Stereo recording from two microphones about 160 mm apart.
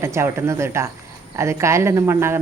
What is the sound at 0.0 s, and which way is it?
Speech, 15° right (ahead or behind).